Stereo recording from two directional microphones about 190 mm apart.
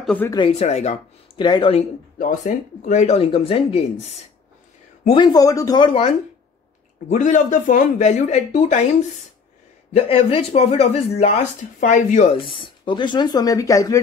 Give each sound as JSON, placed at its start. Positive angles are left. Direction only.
{"t": 0.0, "sound": "speech", "side_deg": 5}
{"t": 0.3, "sound": "speech", "side_deg": 30}
{"t": 2.1, "sound": "speech", "side_deg": 45}
{"t": 5.0, "sound": "speech", "side_deg": 25}
{"t": 7.1, "sound": "speech", "side_deg": 40}
{"t": 9.9, "sound": "speech", "side_deg": 30}